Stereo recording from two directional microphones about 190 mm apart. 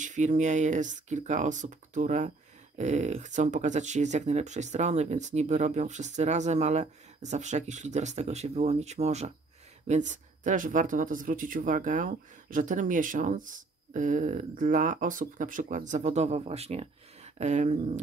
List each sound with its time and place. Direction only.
0.0 s speech: 40° right (ahead or behind)